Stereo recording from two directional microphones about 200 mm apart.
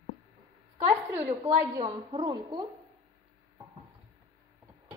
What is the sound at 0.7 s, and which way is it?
A woman's voice, 15° right (ahead or behind).